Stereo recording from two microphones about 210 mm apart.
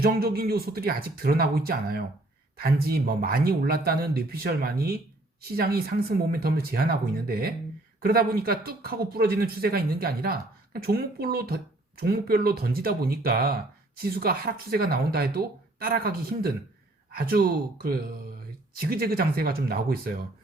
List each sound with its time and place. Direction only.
0.0 s speech: 45° right (ahead or behind)